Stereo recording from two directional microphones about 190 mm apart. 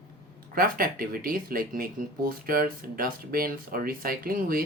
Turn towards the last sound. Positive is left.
turn(degrees=-50)  # may be behind; listen again after turning